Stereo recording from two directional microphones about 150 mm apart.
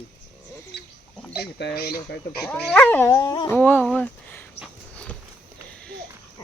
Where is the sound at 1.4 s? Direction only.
90° left.